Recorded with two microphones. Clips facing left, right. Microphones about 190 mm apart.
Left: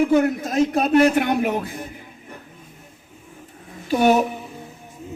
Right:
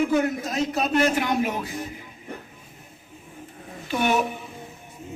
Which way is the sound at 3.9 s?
40° left (ahead or behind).